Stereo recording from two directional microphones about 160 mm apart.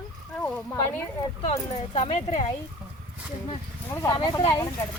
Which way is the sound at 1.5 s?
40° left (ahead or behind).